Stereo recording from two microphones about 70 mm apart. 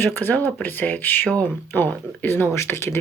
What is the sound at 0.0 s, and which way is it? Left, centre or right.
Speech, left.